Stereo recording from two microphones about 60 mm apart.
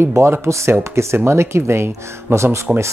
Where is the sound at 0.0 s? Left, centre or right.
Right.